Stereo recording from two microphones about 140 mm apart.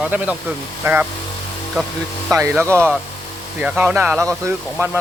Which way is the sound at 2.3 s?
20° right (ahead or behind).